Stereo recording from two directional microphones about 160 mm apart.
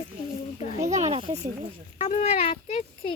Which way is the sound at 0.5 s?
45° left (ahead or behind).